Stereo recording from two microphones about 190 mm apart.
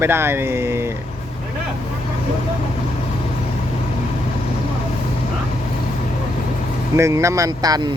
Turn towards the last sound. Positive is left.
turn(degrees=-20)  # may be behind; listen again after turning